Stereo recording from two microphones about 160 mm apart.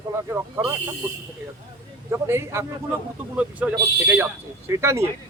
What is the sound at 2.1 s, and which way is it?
A man's voice, 15° right (ahead or behind).